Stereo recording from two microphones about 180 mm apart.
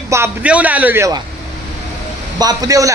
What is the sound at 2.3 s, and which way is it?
Speech, 20° right (ahead or behind).